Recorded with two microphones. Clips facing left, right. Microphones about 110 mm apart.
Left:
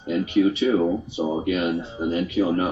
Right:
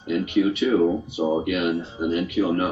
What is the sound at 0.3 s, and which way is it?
Speech, 30° left (ahead or behind).